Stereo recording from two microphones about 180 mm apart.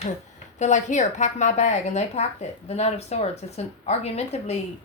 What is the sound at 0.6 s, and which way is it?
Speech, 40° left (ahead or behind).